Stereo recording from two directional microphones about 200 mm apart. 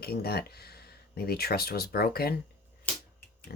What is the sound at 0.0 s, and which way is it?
Speech, 50° left (ahead or behind).